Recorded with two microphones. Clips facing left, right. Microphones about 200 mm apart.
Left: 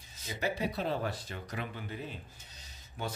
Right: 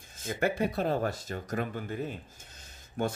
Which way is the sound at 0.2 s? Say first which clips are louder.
Right 5 dB; 50° right (ahead or behind).